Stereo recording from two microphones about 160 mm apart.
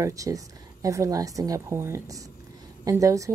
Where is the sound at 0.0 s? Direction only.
20° right (ahead or behind).